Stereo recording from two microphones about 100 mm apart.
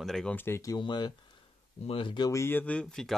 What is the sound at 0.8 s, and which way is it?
Speech, 50° left (ahead or behind).